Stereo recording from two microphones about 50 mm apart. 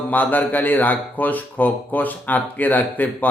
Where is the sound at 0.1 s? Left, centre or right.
Left.